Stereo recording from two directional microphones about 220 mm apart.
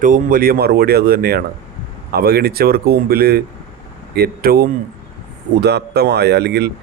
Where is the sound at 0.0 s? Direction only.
40° right (ahead or behind).